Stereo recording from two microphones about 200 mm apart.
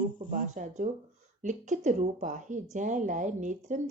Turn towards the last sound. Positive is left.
turn(degrees=-40)  # may be behind; listen again after turning